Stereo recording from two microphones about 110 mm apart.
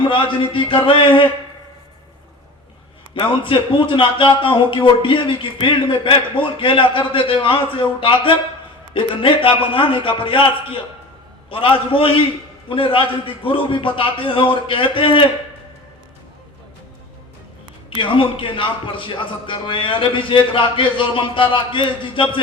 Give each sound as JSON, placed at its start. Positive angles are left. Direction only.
{"t": 0.0, "sound": "speech", "side_deg": 50}
{"t": 3.2, "sound": "a man's voice", "side_deg": 50}
{"t": 17.9, "sound": "speech", "side_deg": 50}